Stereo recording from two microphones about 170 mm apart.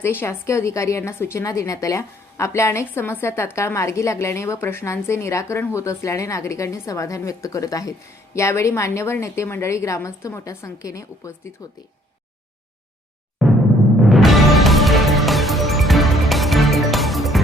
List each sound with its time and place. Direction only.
0.0 s a woman's voice: 15° left (ahead or behind)
14.0 s music: centre (ahead or behind)